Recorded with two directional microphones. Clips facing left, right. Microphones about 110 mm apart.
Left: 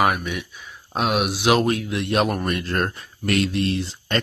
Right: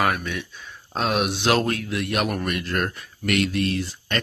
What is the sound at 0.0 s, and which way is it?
Speech, 15° left (ahead or behind).